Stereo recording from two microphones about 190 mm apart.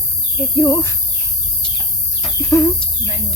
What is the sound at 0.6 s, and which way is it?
Speech, 15° left (ahead or behind).